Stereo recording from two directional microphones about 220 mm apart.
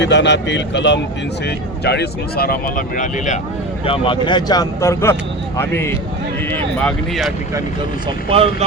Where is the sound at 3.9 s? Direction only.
20° left (ahead or behind).